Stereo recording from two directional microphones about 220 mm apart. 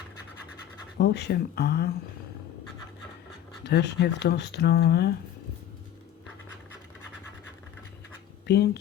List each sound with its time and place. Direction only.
0.9 s speech: 50° left (ahead or behind)
3.6 s speech: 50° left (ahead or behind)
8.4 s speech: 50° left (ahead or behind)